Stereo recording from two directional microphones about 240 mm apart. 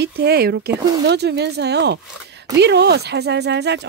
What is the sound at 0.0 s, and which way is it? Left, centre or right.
Speech, right.